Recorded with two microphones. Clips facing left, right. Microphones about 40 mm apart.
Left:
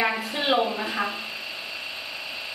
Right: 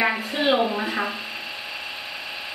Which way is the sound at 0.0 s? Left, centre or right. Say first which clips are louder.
Right 2 dB; right.